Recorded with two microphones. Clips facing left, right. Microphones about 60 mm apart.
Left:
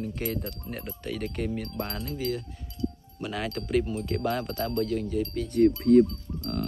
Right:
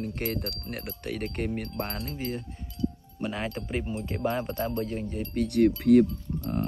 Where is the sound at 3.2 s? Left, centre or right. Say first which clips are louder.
Even; right.